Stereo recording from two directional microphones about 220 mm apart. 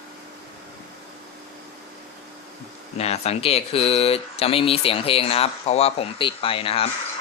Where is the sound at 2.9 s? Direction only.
30° left (ahead or behind).